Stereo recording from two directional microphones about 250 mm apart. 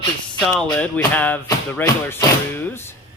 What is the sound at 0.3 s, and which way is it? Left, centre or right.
Speech, centre.